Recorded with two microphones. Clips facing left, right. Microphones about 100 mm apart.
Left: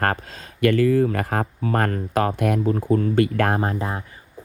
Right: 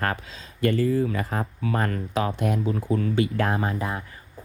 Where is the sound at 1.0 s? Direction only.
55° left (ahead or behind).